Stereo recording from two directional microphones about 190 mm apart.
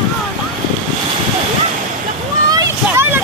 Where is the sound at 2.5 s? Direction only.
15° right (ahead or behind).